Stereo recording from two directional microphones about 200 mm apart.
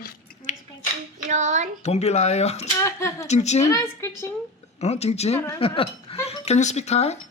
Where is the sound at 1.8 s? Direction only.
35° left (ahead or behind).